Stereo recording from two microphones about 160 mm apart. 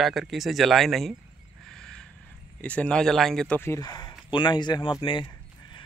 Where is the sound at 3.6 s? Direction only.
20° left (ahead or behind).